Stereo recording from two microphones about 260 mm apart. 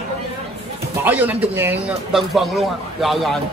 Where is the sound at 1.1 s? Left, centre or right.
Centre.